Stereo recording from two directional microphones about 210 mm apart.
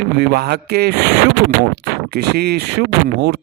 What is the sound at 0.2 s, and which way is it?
Speech, 50° right (ahead or behind).